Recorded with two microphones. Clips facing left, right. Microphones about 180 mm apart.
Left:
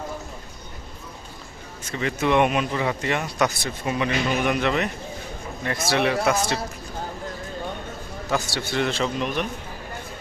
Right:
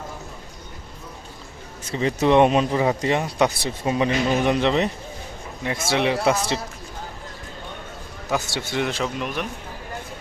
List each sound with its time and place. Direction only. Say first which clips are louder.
1.9 s speech: right 4 dB; 35° right (ahead or behind)
8.3 s a man's voice: even; 15° right (ahead or behind)